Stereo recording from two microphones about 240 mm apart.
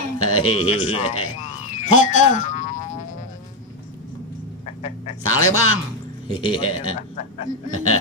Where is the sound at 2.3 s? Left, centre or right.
Left.